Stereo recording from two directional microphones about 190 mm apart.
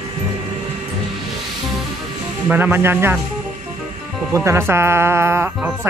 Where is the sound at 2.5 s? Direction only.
10° right (ahead or behind).